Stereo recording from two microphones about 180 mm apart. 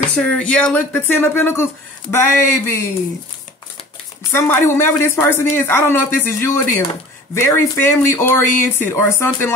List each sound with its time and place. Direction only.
0.1 s speech: 5° left (ahead or behind)
4.3 s speech: 15° left (ahead or behind)